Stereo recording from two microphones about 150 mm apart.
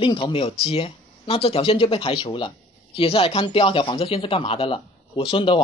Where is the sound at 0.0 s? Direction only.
35° left (ahead or behind).